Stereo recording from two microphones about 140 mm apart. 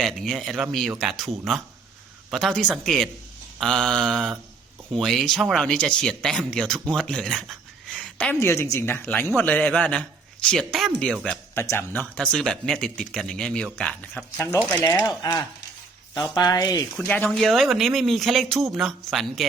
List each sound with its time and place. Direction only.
0.0 s a man's voice: centre (ahead or behind)
11.5 s a man's voice: 20° left (ahead or behind)
12.1 s speech: 5° left (ahead or behind); by 16.8 s 25° left (ahead or behind)
17.1 s speech: 5° left (ahead or behind)